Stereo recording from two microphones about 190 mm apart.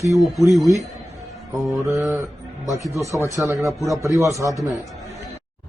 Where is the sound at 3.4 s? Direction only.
15° right (ahead or behind).